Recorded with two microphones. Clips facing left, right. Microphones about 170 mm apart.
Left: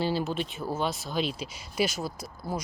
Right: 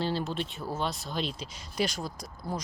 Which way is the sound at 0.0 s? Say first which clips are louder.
Left 2 dB; 5° left (ahead or behind).